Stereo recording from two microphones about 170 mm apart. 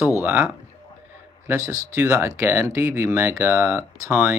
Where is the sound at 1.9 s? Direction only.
15° right (ahead or behind).